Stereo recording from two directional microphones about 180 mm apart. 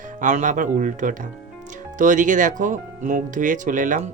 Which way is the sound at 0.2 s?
45° right (ahead or behind).